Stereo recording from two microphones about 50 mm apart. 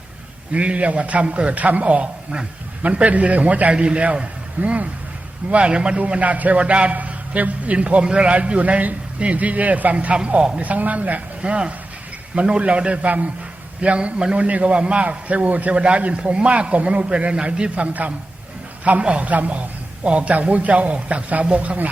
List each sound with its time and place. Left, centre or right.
0.5 s a man's voice: right
10.6 s a man's voice: right